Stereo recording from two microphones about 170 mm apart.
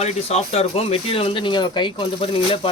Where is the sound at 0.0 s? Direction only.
40° left (ahead or behind).